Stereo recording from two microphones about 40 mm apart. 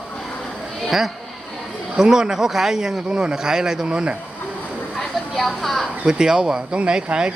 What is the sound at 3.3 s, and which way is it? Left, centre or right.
Speech, centre.